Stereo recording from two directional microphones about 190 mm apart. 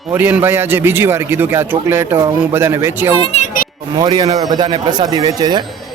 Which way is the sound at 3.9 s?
20° right (ahead or behind).